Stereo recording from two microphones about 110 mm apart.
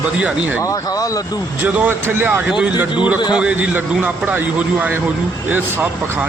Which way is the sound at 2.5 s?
10° right (ahead or behind).